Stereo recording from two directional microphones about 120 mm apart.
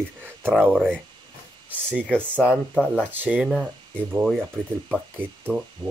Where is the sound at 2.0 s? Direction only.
10° left (ahead or behind).